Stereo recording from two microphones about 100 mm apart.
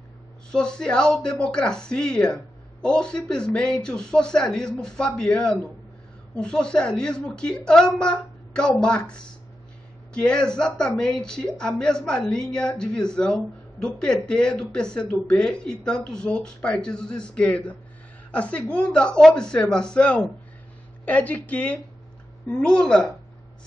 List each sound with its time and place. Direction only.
0.5 s a woman's voice: 10° left (ahead or behind)